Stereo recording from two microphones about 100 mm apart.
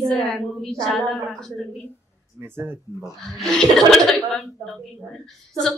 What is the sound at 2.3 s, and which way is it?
Speech, 25° right (ahead or behind).